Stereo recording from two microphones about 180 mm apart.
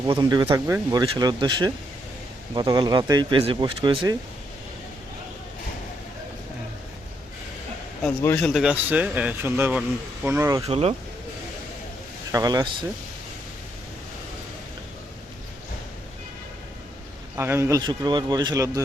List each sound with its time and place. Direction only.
0.1 s speech: 25° right (ahead or behind)
8.2 s a man's voice: 15° left (ahead or behind)
8.4 s a man's voice: 5° right (ahead or behind)
10.7 s speech: 35° right (ahead or behind)
12.3 s speech: 20° right (ahead or behind)
17.3 s speech: 15° right (ahead or behind)